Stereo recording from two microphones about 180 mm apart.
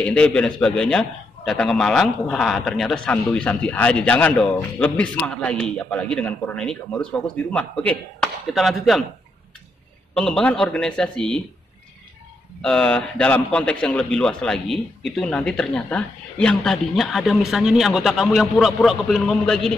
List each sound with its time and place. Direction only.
0.0 s a man's voice: 5° left (ahead or behind)
10.1 s a man's voice: 5° left (ahead or behind)
12.6 s a man's voice: 5° left (ahead or behind)